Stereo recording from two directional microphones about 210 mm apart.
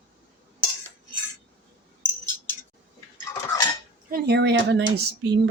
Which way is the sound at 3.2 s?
15° left (ahead or behind).